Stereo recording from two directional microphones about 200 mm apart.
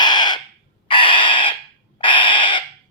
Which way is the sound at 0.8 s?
25° left (ahead or behind).